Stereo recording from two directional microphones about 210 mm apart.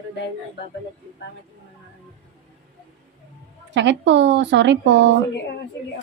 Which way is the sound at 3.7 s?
60° right (ahead or behind).